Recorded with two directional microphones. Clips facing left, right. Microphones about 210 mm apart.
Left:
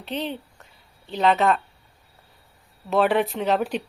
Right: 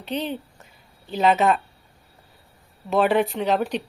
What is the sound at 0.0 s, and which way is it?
Speech, centre (ahead or behind).